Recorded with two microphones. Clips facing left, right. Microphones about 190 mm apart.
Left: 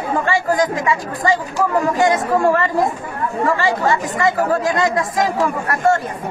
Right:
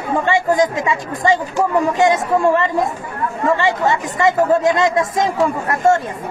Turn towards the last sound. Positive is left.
turn(degrees=-25)  # may be behind; listen again after turning